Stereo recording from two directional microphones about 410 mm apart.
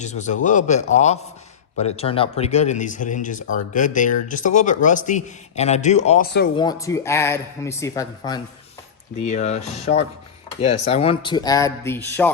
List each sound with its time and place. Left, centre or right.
0.0 s speech: centre
6.6 s speech: centre